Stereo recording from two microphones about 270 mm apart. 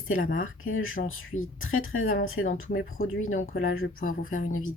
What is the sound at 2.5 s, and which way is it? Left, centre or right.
Speech, left.